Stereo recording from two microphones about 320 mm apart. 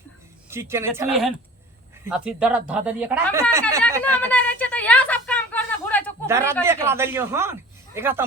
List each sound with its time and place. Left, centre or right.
0.5 s a woman's voice: centre
4.0 s a sound: centre
6.2 s speech: centre